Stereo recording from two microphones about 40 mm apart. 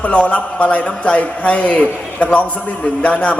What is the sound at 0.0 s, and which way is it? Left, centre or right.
A man's voice, left.